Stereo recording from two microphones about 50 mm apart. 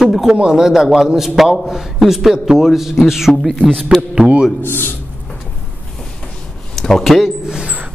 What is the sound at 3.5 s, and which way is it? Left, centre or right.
Speech, centre.